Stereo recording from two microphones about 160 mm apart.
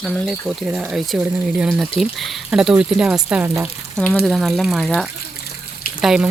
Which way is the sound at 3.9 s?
5° left (ahead or behind).